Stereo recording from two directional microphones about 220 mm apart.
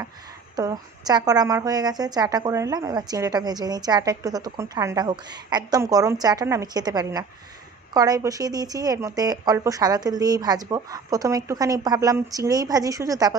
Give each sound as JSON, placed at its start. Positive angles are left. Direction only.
{"t": 0.6, "sound": "a woman's voice", "side_deg": -15}